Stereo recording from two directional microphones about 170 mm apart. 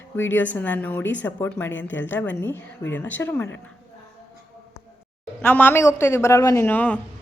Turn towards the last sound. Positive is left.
turn(degrees=10)  # may be behind; listen again after turning